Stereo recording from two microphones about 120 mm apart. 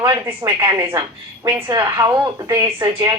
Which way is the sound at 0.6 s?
35° right (ahead or behind).